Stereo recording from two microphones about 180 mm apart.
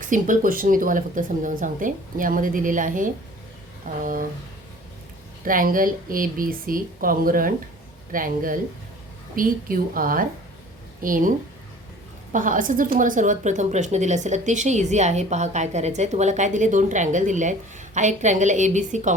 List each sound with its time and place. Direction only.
0.0 s speech: 45° right (ahead or behind)
5.5 s a woman's voice: 50° right (ahead or behind)